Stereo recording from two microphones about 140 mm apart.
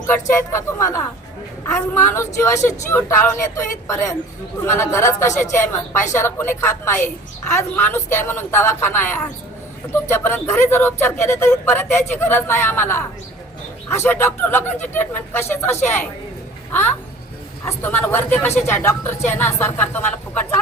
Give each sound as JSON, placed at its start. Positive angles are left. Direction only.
{"t": 0.1, "sound": "a woman's voice", "side_deg": 20}
{"t": 17.7, "sound": "a man's voice", "side_deg": 15}